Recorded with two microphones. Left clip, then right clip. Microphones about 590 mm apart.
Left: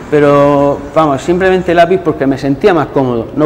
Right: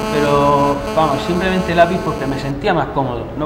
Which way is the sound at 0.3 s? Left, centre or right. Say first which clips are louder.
Left 3 dB; left.